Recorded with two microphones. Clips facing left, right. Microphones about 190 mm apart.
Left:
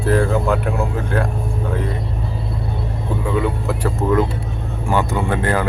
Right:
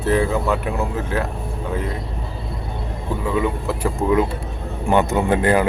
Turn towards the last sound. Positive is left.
turn(degrees=-15)  # may be behind; listen again after turning